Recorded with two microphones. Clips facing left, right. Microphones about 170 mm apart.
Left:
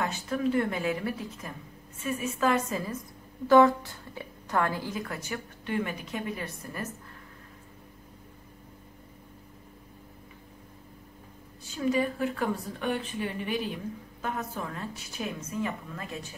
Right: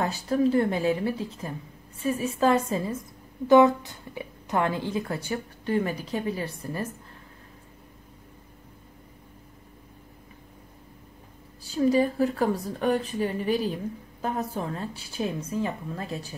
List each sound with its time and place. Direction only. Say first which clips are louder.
0.0 s a woman's voice: right 5 dB; 35° right (ahead or behind)
11.6 s a woman's voice: right 5 dB; 35° right (ahead or behind)